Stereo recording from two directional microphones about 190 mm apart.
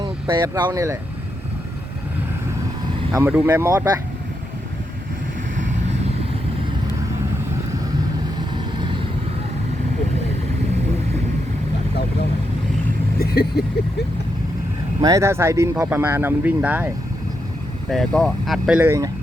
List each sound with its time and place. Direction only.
0.0 s speech: 25° right (ahead or behind)
3.2 s speech: 10° right (ahead or behind)
13.1 s vehicle: 55° left (ahead or behind)
15.0 s speech: 15° right (ahead or behind)
17.9 s speech: centre (ahead or behind)
18.8 s speech: 15° right (ahead or behind)